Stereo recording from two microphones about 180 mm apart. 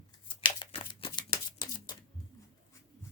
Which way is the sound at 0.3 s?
30° left (ahead or behind).